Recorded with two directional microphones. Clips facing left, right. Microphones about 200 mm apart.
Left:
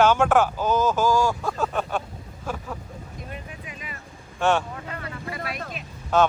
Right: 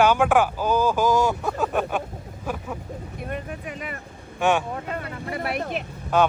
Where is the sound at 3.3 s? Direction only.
60° right (ahead or behind).